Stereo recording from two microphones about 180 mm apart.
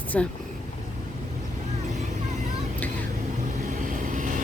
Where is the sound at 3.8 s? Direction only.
45° right (ahead or behind).